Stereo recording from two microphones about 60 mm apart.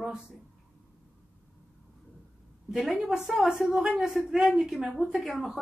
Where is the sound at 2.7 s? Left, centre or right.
Centre.